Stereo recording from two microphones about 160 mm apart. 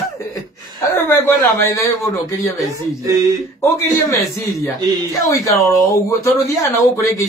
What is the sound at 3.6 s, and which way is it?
Speech, 15° left (ahead or behind).